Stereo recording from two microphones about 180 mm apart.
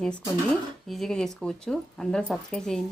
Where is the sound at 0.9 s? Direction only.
Centre (ahead or behind).